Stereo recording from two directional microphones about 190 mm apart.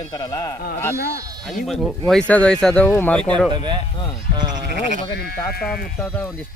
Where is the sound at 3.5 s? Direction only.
25° right (ahead or behind).